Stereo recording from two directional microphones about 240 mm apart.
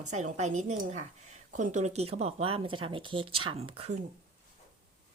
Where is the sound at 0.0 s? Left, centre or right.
Right.